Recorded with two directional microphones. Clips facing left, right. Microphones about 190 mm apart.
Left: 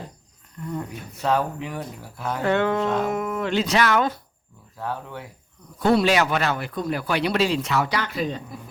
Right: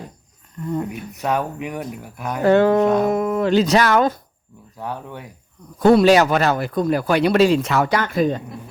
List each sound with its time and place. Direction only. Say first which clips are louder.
0.9 s speech: right 1 dB; 15° right (ahead or behind)
2.4 s speech: right 8 dB; 35° right (ahead or behind)
2.8 s speech: right 7 dB; 15° right (ahead or behind)
3.1 s speech: right 7 dB; 35° right (ahead or behind)
4.8 s speech: right 1 dB; 15° right (ahead or behind)
5.8 s speech: right 7 dB; 45° right (ahead or behind)